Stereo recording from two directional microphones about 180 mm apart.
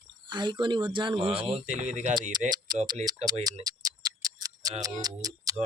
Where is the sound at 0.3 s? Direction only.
25° right (ahead or behind); by 2.1 s 40° right (ahead or behind).